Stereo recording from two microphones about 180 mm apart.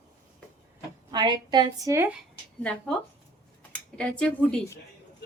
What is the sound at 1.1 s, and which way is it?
A woman's voice, 25° right (ahead or behind).